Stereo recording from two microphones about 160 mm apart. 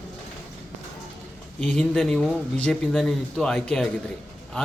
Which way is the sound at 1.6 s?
Centre (ahead or behind).